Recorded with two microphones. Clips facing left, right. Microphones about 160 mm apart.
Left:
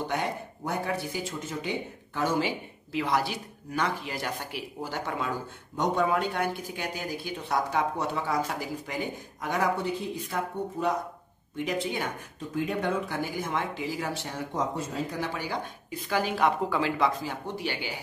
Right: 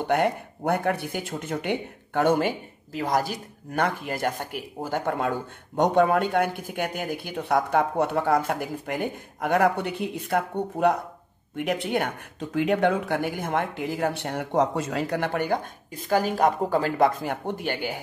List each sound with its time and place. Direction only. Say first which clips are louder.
0.0 s speech: right 7 dB; 60° right (ahead or behind)